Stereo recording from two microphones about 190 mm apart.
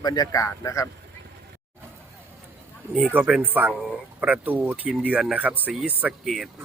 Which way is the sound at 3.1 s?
10° right (ahead or behind).